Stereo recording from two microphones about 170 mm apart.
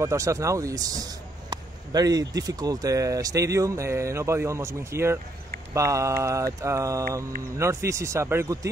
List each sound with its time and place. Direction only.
0.0 s speech: 20° right (ahead or behind)
5.8 s mantra: 15° right (ahead or behind)